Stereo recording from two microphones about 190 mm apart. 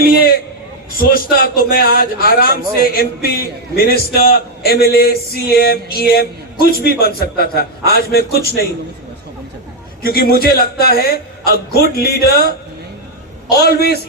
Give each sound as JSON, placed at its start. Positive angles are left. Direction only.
{"t": 0.0, "sound": "a man's voice", "side_deg": 50}
{"t": 10.0, "sound": "a man's voice", "side_deg": 55}